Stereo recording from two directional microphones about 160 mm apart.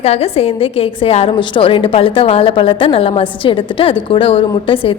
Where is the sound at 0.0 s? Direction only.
40° left (ahead or behind).